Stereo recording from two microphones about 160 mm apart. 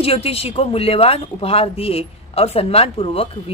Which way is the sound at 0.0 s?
40° left (ahead or behind).